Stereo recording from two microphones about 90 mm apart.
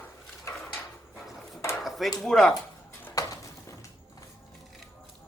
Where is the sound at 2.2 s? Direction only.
5° left (ahead or behind).